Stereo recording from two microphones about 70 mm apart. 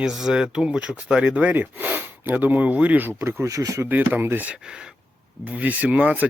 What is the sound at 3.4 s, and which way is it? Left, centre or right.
Speech, right.